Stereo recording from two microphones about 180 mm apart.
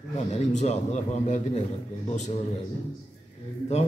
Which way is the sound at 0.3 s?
40° left (ahead or behind).